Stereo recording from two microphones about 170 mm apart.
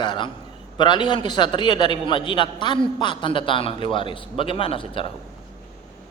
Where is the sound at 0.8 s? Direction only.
25° left (ahead or behind).